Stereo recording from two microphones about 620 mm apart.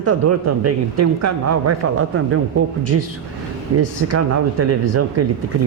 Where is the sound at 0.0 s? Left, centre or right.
Right.